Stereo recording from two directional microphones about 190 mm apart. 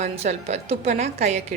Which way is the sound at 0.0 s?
35° right (ahead or behind).